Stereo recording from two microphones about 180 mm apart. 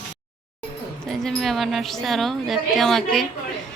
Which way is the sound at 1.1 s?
Centre (ahead or behind).